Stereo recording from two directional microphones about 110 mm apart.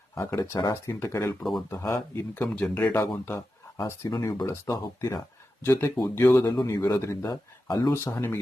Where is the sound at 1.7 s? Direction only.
25° left (ahead or behind).